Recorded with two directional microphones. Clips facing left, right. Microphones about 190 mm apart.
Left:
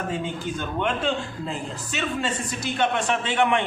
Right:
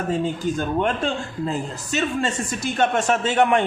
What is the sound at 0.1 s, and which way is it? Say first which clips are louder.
A man's voice: right 6 dB; 40° right (ahead or behind).